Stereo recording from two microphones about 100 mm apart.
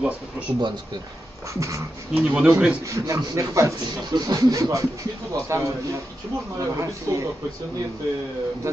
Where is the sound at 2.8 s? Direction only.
30° right (ahead or behind).